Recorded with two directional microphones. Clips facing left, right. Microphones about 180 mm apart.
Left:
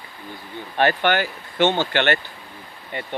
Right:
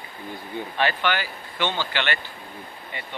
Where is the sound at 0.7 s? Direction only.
50° left (ahead or behind).